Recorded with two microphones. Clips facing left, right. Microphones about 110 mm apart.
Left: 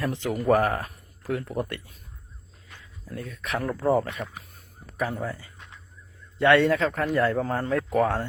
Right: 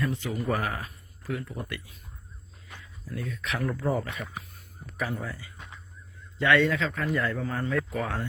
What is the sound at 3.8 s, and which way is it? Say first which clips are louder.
Speech: left 6 dB; 35° left (ahead or behind).